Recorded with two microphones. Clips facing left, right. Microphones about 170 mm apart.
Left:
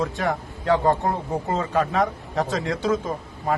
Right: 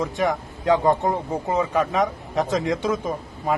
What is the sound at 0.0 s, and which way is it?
A man's voice, 15° right (ahead or behind).